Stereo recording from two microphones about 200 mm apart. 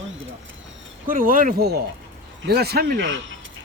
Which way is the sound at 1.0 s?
45° right (ahead or behind).